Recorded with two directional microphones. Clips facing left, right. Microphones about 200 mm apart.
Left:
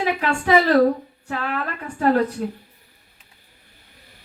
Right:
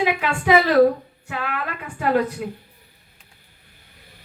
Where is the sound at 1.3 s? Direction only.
35° left (ahead or behind).